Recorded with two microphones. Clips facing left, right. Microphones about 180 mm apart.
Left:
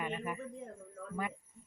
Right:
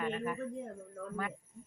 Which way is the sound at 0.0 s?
10° left (ahead or behind).